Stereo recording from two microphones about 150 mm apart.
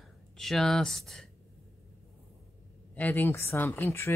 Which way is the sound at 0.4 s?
Centre (ahead or behind).